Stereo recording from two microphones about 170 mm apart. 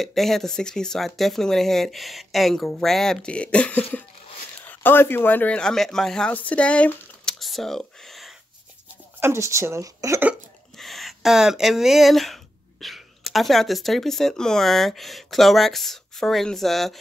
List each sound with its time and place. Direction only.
0.0 s speech: centre (ahead or behind)
9.2 s speech: 15° right (ahead or behind)
10.8 s speech: centre (ahead or behind)